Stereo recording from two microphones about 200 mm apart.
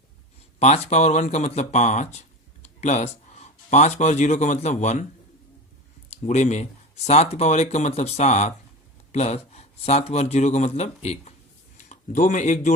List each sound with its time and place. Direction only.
0.6 s speech: 35° left (ahead or behind)
6.1 s speech: 35° left (ahead or behind)